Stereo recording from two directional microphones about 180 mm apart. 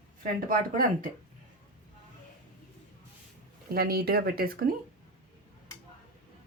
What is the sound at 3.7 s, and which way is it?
Speech, 60° right (ahead or behind).